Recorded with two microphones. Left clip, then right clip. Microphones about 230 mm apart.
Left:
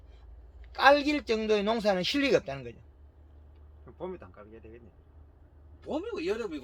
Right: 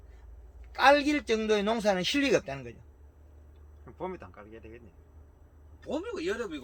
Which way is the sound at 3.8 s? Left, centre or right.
Right.